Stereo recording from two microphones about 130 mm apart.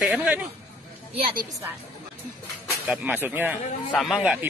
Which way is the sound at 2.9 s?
10° right (ahead or behind).